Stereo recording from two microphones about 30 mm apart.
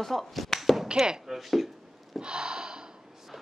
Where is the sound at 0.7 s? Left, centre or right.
Centre.